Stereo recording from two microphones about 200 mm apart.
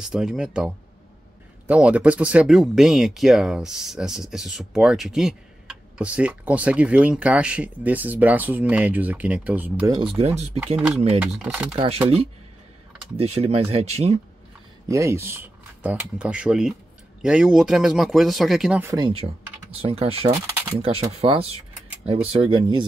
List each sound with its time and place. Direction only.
0.0 s speech: 5° right (ahead or behind)
10.1 s speech: 30° right (ahead or behind)
11.1 s speech: 5° right (ahead or behind)
11.7 s speech: 30° right (ahead or behind)
13.1 s speech: 30° right (ahead or behind)
14.9 s speech: 15° right (ahead or behind)
19.0 s speech: 30° right (ahead or behind)
20.3 s speech: 10° right (ahead or behind)
20.8 s speech: 30° right (ahead or behind)